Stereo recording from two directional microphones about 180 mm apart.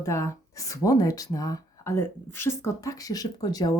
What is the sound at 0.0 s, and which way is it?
Speech, 15° left (ahead or behind).